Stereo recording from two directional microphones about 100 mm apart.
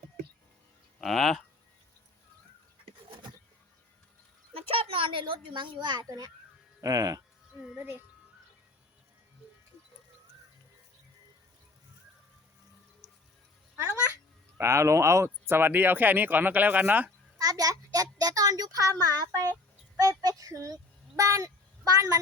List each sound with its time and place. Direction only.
1.0 s speech: centre (ahead or behind)
4.5 s a woman's voice: 70° right (ahead or behind); by 6.1 s 50° right (ahead or behind)
6.1 s speech: 40° right (ahead or behind)
14.6 s speech: 30° right (ahead or behind)
17.3 s a child's voice: 35° right (ahead or behind)